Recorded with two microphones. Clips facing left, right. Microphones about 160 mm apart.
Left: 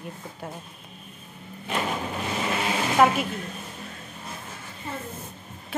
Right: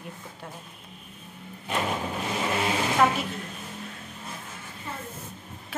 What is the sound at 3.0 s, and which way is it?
Speech, 10° left (ahead or behind).